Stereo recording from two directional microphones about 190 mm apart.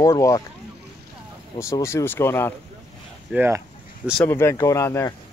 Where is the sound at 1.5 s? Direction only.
15° left (ahead or behind).